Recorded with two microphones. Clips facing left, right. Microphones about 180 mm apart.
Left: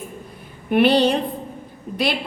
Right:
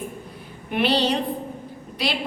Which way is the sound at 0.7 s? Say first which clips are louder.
Left 6 dB; 50° left (ahead or behind).